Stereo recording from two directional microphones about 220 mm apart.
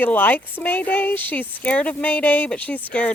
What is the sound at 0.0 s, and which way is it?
Speech, 10° left (ahead or behind).